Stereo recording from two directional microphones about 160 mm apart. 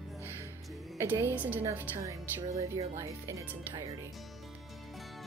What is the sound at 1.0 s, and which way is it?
Speech, 15° right (ahead or behind).